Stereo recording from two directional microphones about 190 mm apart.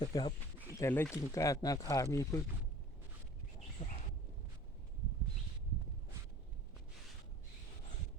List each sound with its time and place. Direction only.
0.0 s speech: 25° left (ahead or behind)
0.8 s speech: 10° left (ahead or behind)
3.8 s a sound: 30° left (ahead or behind)